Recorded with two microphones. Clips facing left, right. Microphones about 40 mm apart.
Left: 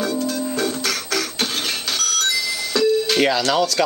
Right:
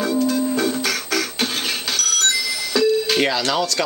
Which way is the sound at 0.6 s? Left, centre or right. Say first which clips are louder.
Right 2 dB; centre.